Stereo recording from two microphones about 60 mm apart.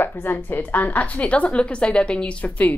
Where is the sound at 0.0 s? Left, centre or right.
Left.